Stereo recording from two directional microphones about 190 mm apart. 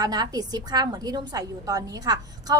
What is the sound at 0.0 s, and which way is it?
A woman's voice, 20° right (ahead or behind).